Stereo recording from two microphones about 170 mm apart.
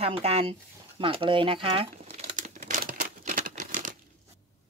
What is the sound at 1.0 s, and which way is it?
Crumpling, 30° right (ahead or behind).